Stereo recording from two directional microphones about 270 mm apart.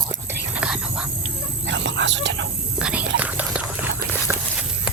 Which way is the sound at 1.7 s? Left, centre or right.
Right.